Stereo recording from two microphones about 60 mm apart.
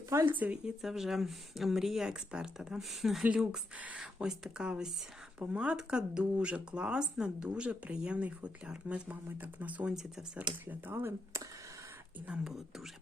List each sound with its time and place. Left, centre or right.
0.3 s speech: right
0.6 s speech: centre
3.3 s speech: centre
3.8 s speech: right
4.0 s speech: centre; by 9.9 s right
9.9 s speech: centre
10.3 s speech: right
12.5 s speech: centre